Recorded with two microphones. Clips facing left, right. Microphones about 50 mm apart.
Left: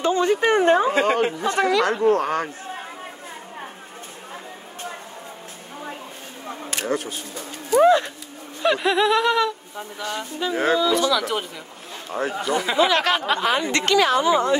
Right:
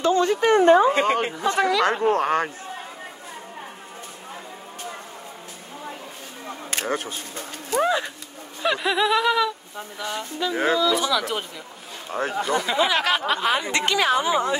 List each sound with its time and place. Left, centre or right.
0.0 s speech: centre
0.7 s speech: centre
1.9 s speech: right
6.7 s speech: right
7.8 s speech: centre
10.1 s speech: centre
11.0 s speech: centre
12.1 s speech: right
12.7 s speech: centre
13.7 s a woman's voice: centre